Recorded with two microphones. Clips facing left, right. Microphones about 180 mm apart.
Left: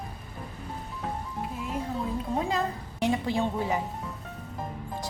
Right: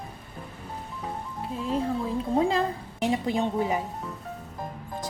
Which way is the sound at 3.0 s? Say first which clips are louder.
Right 1 dB; 20° right (ahead or behind).